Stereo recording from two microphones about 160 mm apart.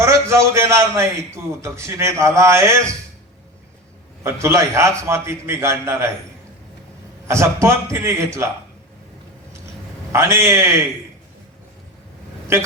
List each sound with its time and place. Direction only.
0.0 s a man's voice: 15° right (ahead or behind)
4.2 s a man's voice: 15° right (ahead or behind)
7.3 s a man's voice: 20° right (ahead or behind)
10.1 s a man's voice: 15° right (ahead or behind)
12.5 s a man's voice: 15° right (ahead or behind)